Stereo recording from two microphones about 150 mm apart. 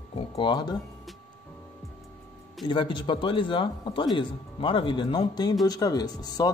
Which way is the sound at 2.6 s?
30° left (ahead or behind).